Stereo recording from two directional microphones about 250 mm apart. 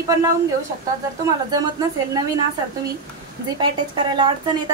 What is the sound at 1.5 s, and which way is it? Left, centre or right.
Speech, centre.